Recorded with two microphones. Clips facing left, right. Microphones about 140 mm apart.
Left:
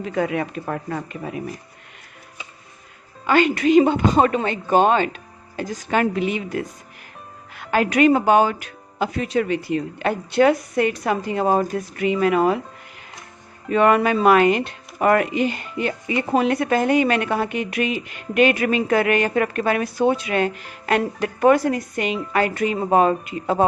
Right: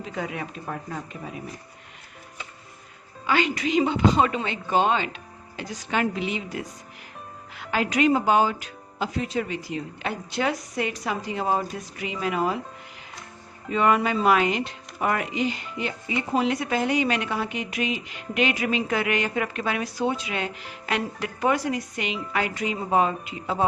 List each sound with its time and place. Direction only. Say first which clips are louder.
0.0 s speech: left 9 dB; 65° left (ahead or behind)
3.2 s speech: left 7 dB; 50° left (ahead or behind)
13.7 s speech: left 5 dB; 60° left (ahead or behind)